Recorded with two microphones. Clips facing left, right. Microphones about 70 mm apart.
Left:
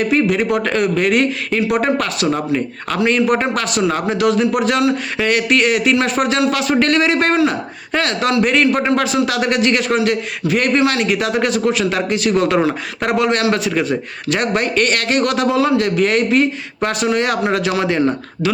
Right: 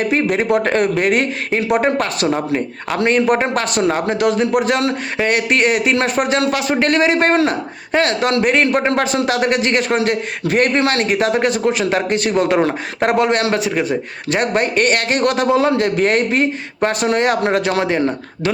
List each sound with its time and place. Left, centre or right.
0.1 s a man's voice: right
12.3 s a man's voice: right
12.6 s a man's voice: right